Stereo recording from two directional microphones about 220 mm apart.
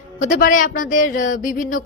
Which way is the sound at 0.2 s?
35° left (ahead or behind).